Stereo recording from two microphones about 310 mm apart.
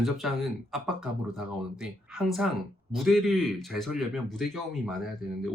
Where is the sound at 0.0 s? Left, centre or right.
Centre.